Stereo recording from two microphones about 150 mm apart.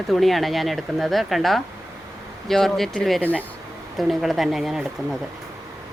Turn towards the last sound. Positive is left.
turn(degrees=0)  # may be behind; listen again after turning